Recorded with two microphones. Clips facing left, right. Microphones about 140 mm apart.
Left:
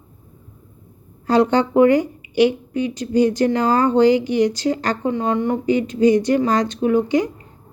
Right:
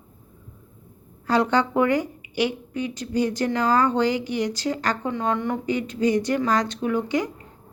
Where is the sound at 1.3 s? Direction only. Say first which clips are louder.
Left 5 dB; 20° left (ahead or behind).